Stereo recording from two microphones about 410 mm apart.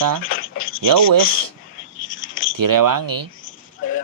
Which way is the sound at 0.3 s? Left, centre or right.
Left.